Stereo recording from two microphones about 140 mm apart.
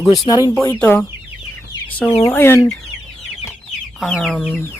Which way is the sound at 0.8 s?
15° left (ahead or behind).